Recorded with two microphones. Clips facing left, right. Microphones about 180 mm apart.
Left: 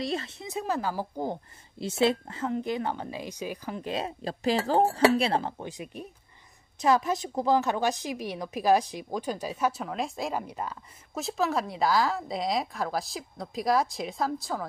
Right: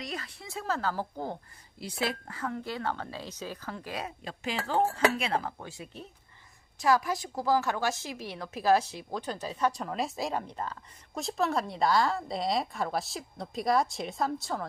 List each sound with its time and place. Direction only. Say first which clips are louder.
0.0 s a woman's voice: left 7 dB; 25° left (ahead or behind)
1.8 s a woman's voice: left 8 dB; 25° left (ahead or behind); by 14.7 s centre (ahead or behind)